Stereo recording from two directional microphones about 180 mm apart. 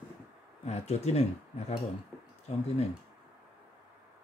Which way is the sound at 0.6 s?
35° left (ahead or behind).